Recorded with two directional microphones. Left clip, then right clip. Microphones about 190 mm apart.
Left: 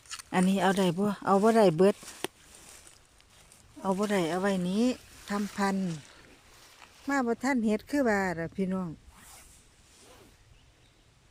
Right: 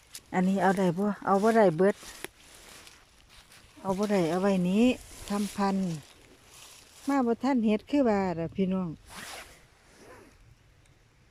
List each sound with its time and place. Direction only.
0.3 s speech: centre (ahead or behind)
3.8 s speech: 5° left (ahead or behind)
4.1 s speech: 5° right (ahead or behind)
7.1 s speech: 10° right (ahead or behind)
9.1 s zipper: 50° right (ahead or behind)